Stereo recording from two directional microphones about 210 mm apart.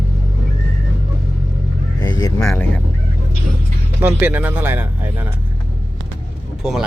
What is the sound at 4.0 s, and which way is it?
Speech, 10° right (ahead or behind).